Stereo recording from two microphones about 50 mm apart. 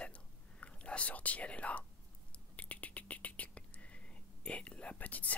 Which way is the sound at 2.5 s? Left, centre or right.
Left.